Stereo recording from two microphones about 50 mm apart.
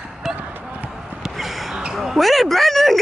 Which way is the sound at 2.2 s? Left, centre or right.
Centre.